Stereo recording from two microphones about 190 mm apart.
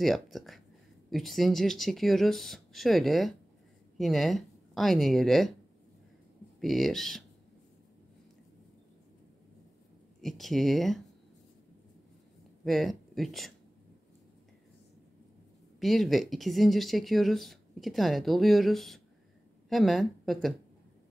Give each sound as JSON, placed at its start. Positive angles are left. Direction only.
{"t": 0.0, "sound": "speech", "side_deg": 0}
{"t": 6.6, "sound": "speech", "side_deg": 0}
{"t": 10.2, "sound": "speech", "side_deg": 0}
{"t": 12.6, "sound": "speech", "side_deg": 0}
{"t": 15.8, "sound": "speech", "side_deg": 0}